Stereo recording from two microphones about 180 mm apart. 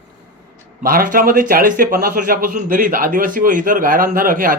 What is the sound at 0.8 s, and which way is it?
A man's voice, 50° right (ahead or behind).